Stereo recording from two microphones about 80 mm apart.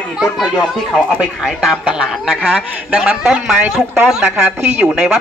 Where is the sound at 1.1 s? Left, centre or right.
Centre.